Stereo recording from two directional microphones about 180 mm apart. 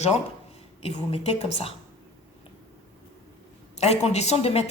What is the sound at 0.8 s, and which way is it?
Speech, 35° left (ahead or behind).